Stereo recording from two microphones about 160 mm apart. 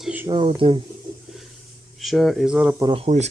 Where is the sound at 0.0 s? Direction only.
10° right (ahead or behind).